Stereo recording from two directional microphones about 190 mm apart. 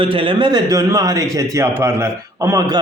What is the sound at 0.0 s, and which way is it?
A man's voice, 30° right (ahead or behind).